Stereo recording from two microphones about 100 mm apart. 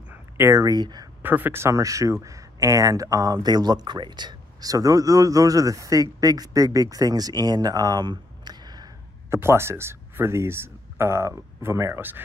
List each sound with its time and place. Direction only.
0.4 s speech: 30° right (ahead or behind)
1.2 s speech: 20° right (ahead or behind); by 8.9 s 45° right (ahead or behind)
9.3 s speech: 25° right (ahead or behind)